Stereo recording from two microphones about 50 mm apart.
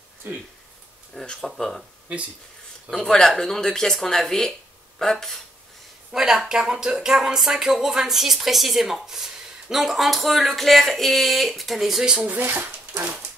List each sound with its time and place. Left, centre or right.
1.2 s speech: centre
2.9 s speech: centre
6.1 s speech: centre
12.4 s speech: right